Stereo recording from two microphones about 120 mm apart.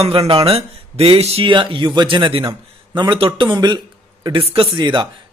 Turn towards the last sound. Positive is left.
turn(degrees=-40)  # may be behind; listen again after turning